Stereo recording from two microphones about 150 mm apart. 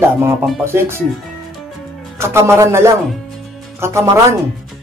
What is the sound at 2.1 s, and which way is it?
Speech, 15° right (ahead or behind).